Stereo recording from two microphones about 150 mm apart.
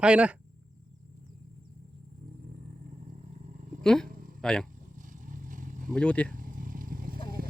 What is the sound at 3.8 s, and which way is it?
Speech, 5° left (ahead or behind).